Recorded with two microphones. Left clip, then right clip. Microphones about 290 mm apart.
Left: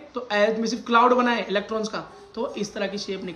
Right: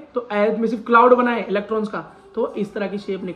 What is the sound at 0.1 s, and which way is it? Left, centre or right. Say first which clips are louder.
A man's voice: right 2 dB; centre.